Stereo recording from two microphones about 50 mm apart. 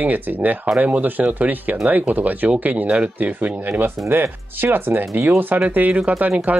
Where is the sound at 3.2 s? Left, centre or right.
Right.